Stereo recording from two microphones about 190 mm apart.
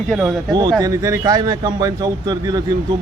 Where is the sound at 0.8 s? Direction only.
15° right (ahead or behind).